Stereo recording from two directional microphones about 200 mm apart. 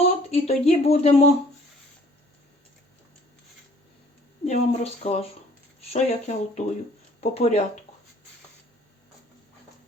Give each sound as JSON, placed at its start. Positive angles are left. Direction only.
{"t": 0.3, "sound": "speech", "side_deg": 30}
{"t": 4.4, "sound": "speech", "side_deg": 35}